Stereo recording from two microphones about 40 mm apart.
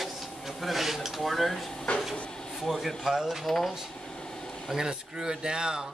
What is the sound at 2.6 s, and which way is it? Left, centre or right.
Speech, centre.